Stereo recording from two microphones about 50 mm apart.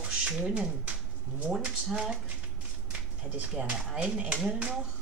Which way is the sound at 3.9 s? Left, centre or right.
Centre.